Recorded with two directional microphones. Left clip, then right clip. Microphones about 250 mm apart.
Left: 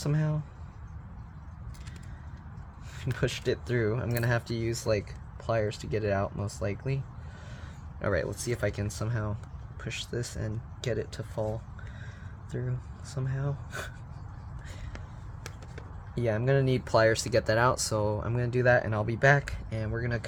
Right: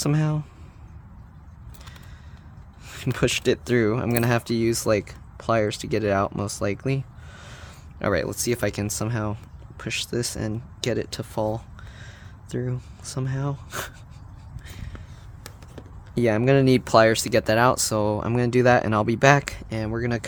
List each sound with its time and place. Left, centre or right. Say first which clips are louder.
0.0 s speech: right 7 dB; right
2.8 s speech: right 8 dB; right
16.1 s speech: right 8 dB; right